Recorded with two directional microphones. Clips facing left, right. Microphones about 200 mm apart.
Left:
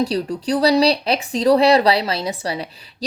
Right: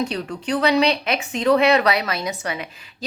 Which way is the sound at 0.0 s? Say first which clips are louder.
Left 5 dB; 35° left (ahead or behind).